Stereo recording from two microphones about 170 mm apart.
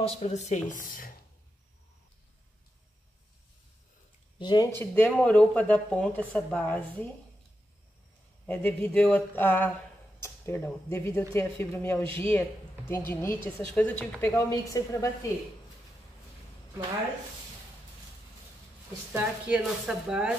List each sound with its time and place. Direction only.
0.0 s speech: 40° left (ahead or behind); by 1.1 s 55° left (ahead or behind)
4.4 s speech: 25° left (ahead or behind)
4.7 s speech: 10° left (ahead or behind)
8.5 s speech: 10° left (ahead or behind)
19.1 s speech: 5° right (ahead or behind)